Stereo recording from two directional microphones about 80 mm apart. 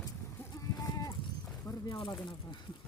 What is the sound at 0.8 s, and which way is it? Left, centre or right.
Sheep, left.